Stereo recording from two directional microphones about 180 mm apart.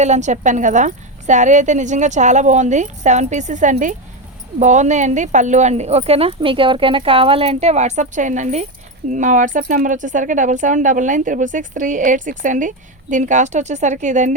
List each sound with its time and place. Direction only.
0.0 s speech: 40° right (ahead or behind)